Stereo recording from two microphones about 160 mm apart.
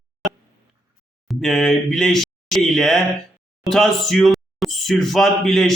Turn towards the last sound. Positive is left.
turn(degrees=0)  # may be behind; listen again after turning